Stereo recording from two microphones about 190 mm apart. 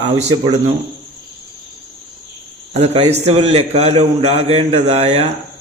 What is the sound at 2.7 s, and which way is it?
A man's voice, 35° right (ahead or behind).